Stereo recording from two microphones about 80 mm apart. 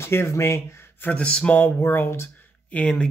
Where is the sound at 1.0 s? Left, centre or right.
Centre.